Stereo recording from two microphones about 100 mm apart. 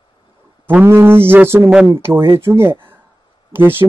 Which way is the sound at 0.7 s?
25° right (ahead or behind).